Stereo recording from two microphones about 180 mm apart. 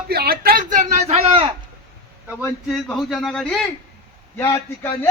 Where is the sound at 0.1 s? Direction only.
60° right (ahead or behind); by 1.5 s 30° right (ahead or behind).